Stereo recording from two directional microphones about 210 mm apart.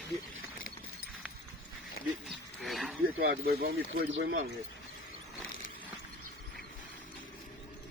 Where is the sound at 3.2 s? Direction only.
45° right (ahead or behind).